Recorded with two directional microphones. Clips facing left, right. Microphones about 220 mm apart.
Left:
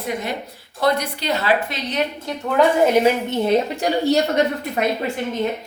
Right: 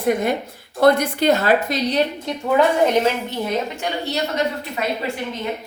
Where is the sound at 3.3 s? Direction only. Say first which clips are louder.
Left 5 dB; 35° left (ahead or behind).